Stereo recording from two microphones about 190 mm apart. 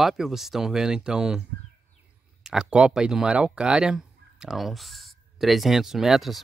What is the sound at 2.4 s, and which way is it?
Speech, 5° right (ahead or behind).